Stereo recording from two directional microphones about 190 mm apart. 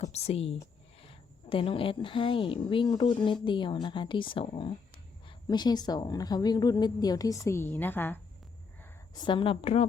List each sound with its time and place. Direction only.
0.0 s a sound: 35° left (ahead or behind)
1.0 s a woman's voice: 30° left (ahead or behind); by 8.2 s 10° left (ahead or behind)
9.1 s a woman's voice: 25° left (ahead or behind)